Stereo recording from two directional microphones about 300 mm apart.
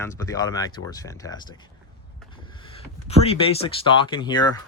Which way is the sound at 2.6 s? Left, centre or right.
Centre.